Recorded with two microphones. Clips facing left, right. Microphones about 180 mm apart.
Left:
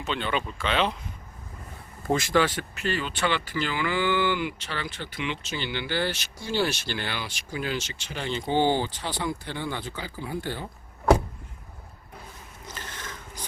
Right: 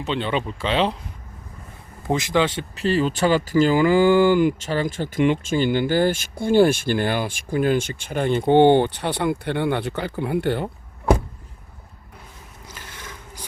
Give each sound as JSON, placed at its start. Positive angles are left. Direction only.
{"t": 0.0, "sound": "speech", "side_deg": -30}
{"t": 2.0, "sound": "speech", "side_deg": -20}
{"t": 12.6, "sound": "a sound", "side_deg": -10}